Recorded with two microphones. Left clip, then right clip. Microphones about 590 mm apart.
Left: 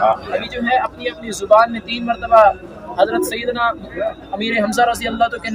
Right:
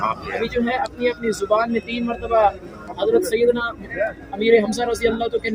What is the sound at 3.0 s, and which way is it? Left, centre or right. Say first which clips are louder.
A man's voice: even; centre.